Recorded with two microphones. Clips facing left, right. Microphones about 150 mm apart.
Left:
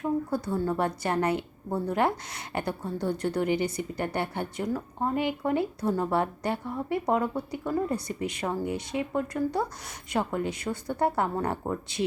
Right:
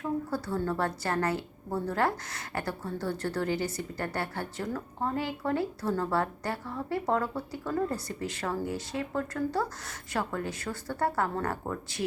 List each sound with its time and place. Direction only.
0.0 s a woman's voice: 15° left (ahead or behind)